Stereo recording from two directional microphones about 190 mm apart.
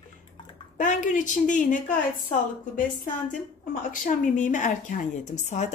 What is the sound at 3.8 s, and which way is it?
Speech, 45° left (ahead or behind).